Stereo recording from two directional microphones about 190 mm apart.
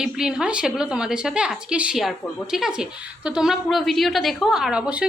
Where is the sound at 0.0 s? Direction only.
5° right (ahead or behind).